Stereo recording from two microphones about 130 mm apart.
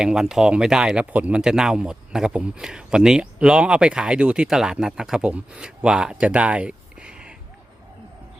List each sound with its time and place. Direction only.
0.0 s speech: 5° right (ahead or behind)